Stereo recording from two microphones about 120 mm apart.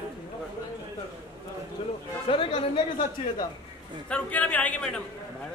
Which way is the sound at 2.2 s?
45° left (ahead or behind).